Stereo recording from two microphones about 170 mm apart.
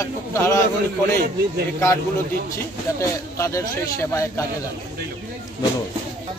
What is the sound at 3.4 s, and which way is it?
Speech, 15° left (ahead or behind).